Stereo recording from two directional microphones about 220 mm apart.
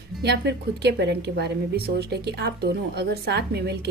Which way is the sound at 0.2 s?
50° right (ahead or behind).